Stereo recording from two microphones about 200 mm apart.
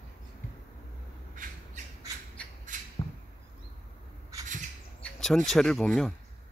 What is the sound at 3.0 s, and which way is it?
Arrow, 20° left (ahead or behind).